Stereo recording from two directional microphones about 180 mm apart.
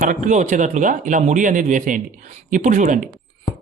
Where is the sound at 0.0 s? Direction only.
45° right (ahead or behind).